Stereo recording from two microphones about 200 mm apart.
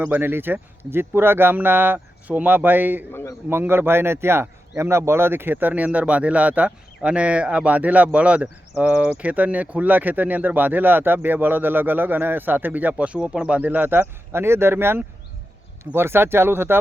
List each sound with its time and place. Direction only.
0.0 s speech: 10° right (ahead or behind)
3.1 s a sound: 10° left (ahead or behind)
3.5 s speech: 10° right (ahead or behind)